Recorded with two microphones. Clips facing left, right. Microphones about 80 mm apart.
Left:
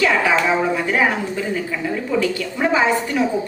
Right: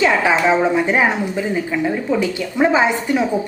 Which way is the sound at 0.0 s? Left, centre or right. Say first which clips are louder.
Right 2 dB; right.